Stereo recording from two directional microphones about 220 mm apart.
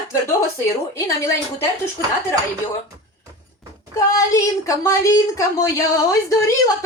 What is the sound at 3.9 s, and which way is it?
A woman's voice, 15° left (ahead or behind).